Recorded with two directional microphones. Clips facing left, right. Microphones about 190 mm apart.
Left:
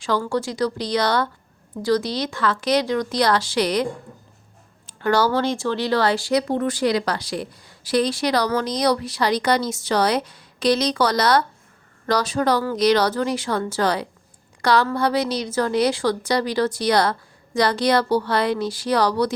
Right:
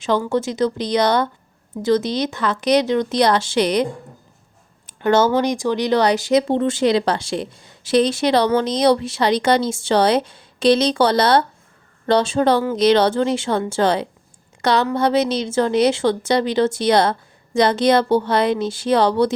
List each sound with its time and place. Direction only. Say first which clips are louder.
0.0 s speech: right 3 dB; 20° right (ahead or behind)
4.9 s speech: right 4 dB; 20° right (ahead or behind)